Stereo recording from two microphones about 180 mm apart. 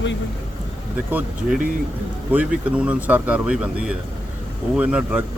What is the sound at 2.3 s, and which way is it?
Speech, 10° right (ahead or behind).